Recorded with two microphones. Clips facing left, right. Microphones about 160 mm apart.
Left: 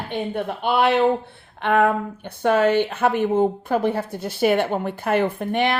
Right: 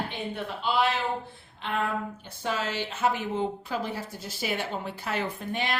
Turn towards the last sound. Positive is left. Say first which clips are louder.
# left 9 dB
turn(degrees=60)  # may be behind; listen again after turning